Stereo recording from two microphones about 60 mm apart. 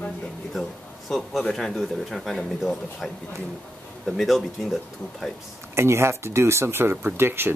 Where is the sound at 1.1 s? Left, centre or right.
Centre.